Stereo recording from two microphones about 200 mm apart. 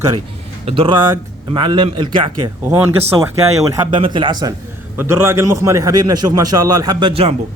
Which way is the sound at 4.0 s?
25° right (ahead or behind).